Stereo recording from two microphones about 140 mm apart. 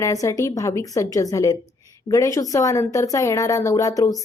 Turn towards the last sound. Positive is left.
turn(degrees=25)  # may be behind; listen again after turning